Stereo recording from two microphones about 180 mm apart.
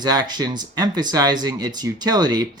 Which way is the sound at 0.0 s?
25° right (ahead or behind).